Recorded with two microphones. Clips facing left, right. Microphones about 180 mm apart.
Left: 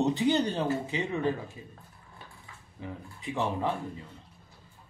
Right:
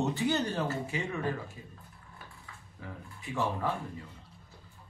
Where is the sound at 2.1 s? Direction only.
20° left (ahead or behind).